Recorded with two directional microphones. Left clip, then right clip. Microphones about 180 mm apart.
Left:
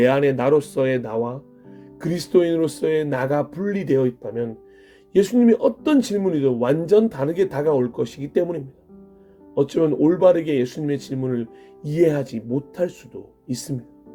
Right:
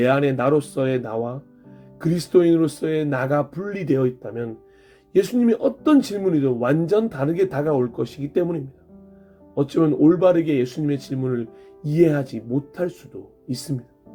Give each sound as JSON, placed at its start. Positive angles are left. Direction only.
{"t": 0.0, "sound": "speech", "side_deg": 30}
{"t": 9.6, "sound": "speech", "side_deg": 30}